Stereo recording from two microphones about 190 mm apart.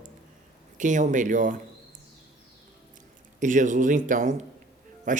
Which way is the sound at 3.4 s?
40° right (ahead or behind).